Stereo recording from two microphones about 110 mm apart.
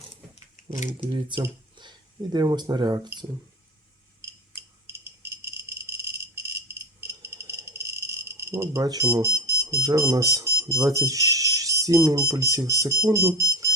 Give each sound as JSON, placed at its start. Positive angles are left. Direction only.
{"t": 0.8, "sound": "speech", "side_deg": -40}
{"t": 7.0, "sound": "cricket", "side_deg": -25}
{"t": 9.0, "sound": "speech", "side_deg": -25}